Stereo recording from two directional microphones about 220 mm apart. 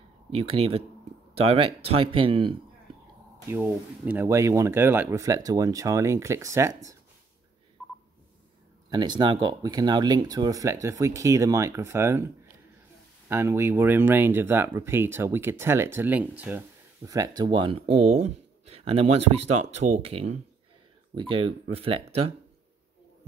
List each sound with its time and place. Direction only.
0.3 s speech: 25° right (ahead or behind)
3.4 s speech: 10° right (ahead or behind)
7.8 s telephone dialing: 5° left (ahead or behind)
8.9 s speech: 20° right (ahead or behind)
13.3 s speech: 10° right (ahead or behind); by 22.0 s 25° right (ahead or behind)